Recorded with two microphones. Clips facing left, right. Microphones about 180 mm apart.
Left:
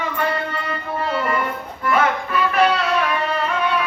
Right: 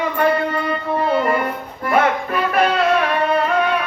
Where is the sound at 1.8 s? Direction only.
45° right (ahead or behind).